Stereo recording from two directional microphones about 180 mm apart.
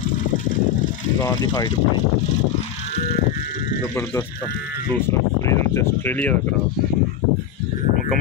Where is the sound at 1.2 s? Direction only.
20° left (ahead or behind).